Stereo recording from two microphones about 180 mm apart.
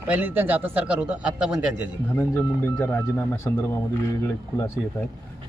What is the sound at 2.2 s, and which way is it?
Speech, 10° left (ahead or behind).